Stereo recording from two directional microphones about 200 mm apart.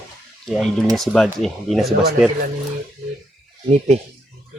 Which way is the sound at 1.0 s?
Centre (ahead or behind).